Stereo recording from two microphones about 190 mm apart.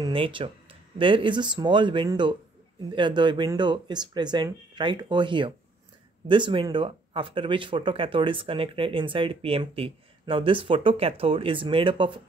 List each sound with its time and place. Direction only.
0.0 s speech: 25° right (ahead or behind)